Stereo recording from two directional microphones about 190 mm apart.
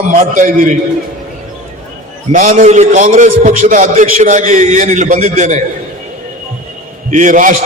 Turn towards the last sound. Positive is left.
turn(degrees=-45)  # may be behind; listen again after turning